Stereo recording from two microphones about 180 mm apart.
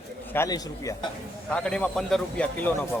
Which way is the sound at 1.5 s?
5° left (ahead or behind).